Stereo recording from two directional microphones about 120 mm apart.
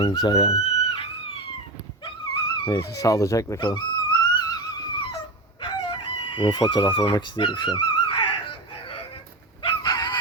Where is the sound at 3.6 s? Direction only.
40° left (ahead or behind).